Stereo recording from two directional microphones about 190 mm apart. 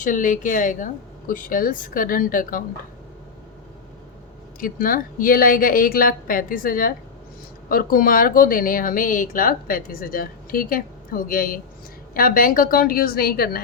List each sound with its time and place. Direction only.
0.0 s speech: 45° left (ahead or behind)
4.6 s speech: 45° left (ahead or behind)